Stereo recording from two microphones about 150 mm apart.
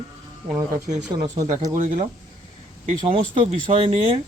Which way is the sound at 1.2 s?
25° right (ahead or behind).